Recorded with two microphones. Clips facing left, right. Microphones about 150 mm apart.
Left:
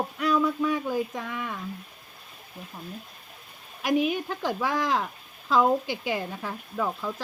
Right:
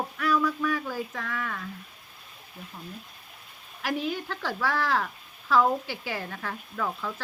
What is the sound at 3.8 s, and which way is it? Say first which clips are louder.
Speech: left 5 dB; 15° left (ahead or behind).